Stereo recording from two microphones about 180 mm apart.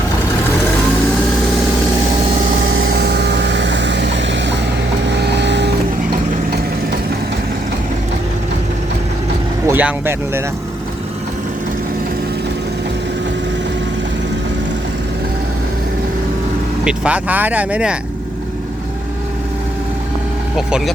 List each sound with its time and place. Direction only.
2.4 s vehicle: 55° right (ahead or behind)
2.7 s vehicle: 75° right (ahead or behind)
5.0 s vehicle: 70° right (ahead or behind)
9.6 s speech: 10° right (ahead or behind)
16.8 s speech: 5° right (ahead or behind)
20.6 s speech: 5° right (ahead or behind)